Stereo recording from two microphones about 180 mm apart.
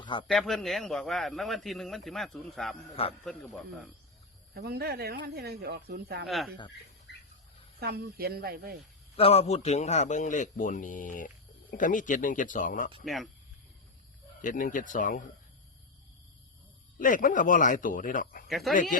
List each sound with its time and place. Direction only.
0.0 s a sound: 25° left (ahead or behind)
0.3 s a man's voice: centre (ahead or behind)
2.9 s a man's voice: 35° left (ahead or behind)
3.2 s a man's voice: centre (ahead or behind)
4.5 s speech: 60° right (ahead or behind)
6.2 s a man's voice: centre (ahead or behind)
7.1 s bird: 70° left (ahead or behind)
7.8 s speech: 65° right (ahead or behind)
9.1 s a man's voice: 30° left (ahead or behind)
14.4 s a man's voice: 50° left (ahead or behind)
17.0 s a man's voice: 50° left (ahead or behind)
18.4 s speech: centre (ahead or behind)
18.7 s a man's voice: 50° left (ahead or behind)